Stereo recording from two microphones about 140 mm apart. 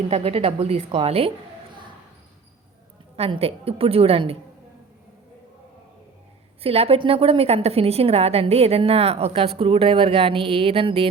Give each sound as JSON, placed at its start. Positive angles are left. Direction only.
{"t": 0.1, "sound": "a woman's voice", "side_deg": -45}
{"t": 3.2, "sound": "a woman's voice", "side_deg": -45}
{"t": 6.6, "sound": "a woman's voice", "side_deg": -45}